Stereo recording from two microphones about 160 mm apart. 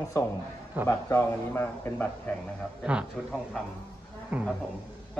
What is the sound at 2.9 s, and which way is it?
A man's voice, 5° right (ahead or behind).